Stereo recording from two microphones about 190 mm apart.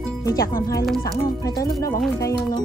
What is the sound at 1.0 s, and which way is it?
Speech, 20° left (ahead or behind).